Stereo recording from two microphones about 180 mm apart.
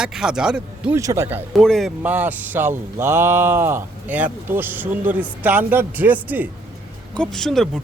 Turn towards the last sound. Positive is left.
turn(degrees=0)  # may be behind; listen again after turning